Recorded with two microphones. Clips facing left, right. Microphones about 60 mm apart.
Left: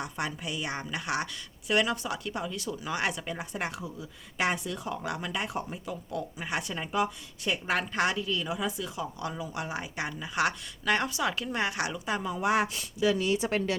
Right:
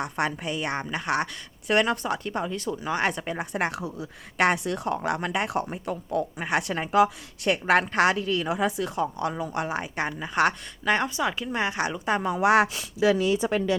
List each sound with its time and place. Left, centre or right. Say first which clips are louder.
0.0 s a woman's voice: right 6 dB; right
2.4 s speech: right 5 dB; right
3.3 s a woman's voice: right 7 dB; right
3.8 s speech: right 6 dB; right
6.1 s speech: right 9 dB; right
6.5 s speech: right 7 dB; right
8.1 s a woman's voice: right 5 dB; right
10.8 s a woman's voice: right 3 dB; right
12.2 s speech: right 7 dB; right